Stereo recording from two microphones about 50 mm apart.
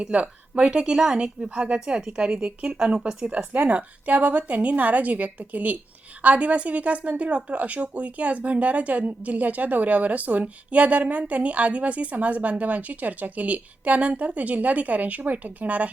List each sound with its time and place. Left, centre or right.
0.0 s a woman's voice: right
3.3 s a woman's voice: right